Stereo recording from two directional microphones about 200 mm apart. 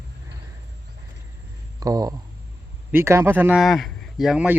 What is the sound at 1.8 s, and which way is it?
Speech, 15° right (ahead or behind).